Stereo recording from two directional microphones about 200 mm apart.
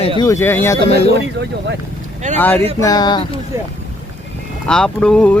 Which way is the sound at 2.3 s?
10° left (ahead or behind).